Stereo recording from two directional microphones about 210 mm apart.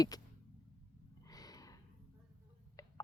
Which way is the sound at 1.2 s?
15° left (ahead or behind).